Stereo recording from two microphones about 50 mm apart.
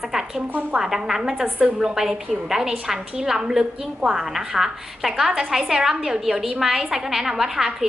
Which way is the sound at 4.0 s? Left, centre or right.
Centre.